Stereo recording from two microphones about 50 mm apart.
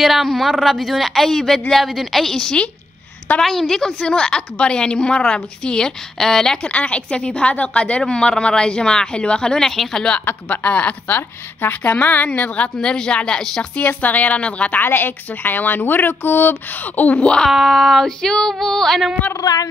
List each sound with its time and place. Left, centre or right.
0.0 s a woman's voice: centre
6.7 s a woman's voice: left; by 10.0 s centre
10.2 s a woman's voice: left; by 13.7 s centre
13.7 s a woman's voice: left
14.8 s a woman's voice: left
17.5 s a woman's voice: centre